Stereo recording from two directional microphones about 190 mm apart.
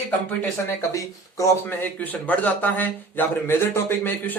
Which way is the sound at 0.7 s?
15° left (ahead or behind).